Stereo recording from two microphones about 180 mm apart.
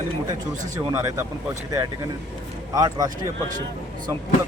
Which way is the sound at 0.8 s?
20° right (ahead or behind).